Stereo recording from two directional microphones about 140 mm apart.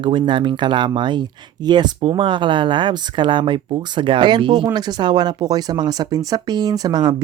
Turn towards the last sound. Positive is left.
turn(degrees=-30)  # may be behind; listen again after turning